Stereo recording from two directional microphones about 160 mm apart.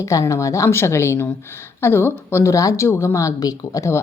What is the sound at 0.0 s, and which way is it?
A woman's voice, 20° left (ahead or behind).